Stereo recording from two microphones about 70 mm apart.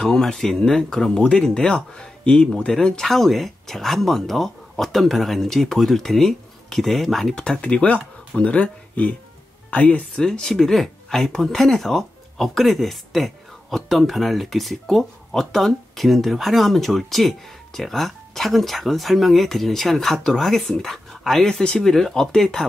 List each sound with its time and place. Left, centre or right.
0.0 s speech: centre
7.6 s speech: centre